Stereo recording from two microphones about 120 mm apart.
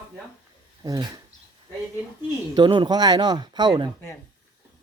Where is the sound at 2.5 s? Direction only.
35° right (ahead or behind).